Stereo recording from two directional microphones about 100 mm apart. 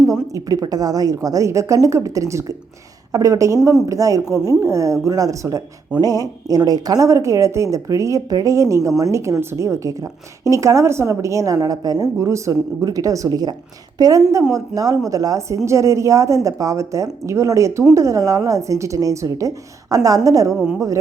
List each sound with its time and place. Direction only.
0.1 s speech: 35° right (ahead or behind)
20.5 s speech: 5° right (ahead or behind)